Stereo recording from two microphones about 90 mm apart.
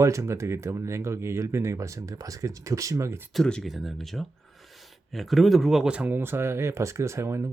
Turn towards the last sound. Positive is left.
turn(degrees=-30)  # may be behind; listen again after turning